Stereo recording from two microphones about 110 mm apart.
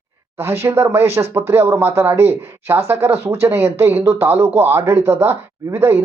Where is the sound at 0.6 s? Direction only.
25° right (ahead or behind).